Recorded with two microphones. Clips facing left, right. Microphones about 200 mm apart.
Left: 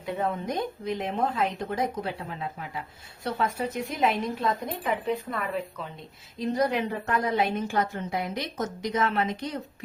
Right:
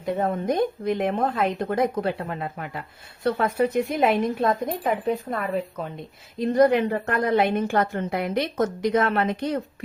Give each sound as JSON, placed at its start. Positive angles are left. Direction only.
{"t": 0.0, "sound": "a woman's voice", "side_deg": -50}
{"t": 6.4, "sound": "a woman's voice", "side_deg": -60}